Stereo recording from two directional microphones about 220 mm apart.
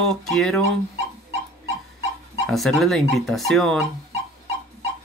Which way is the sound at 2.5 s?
Centre (ahead or behind).